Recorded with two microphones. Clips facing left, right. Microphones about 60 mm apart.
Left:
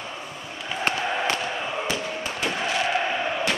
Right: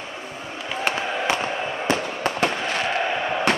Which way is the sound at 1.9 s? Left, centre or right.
Right.